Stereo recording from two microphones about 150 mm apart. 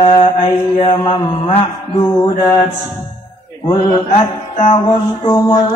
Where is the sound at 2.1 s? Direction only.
25° left (ahead or behind).